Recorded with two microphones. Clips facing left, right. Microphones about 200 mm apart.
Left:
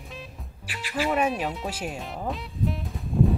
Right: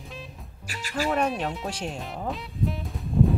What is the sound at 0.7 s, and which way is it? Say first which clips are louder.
Speech: even; 45° right (ahead or behind).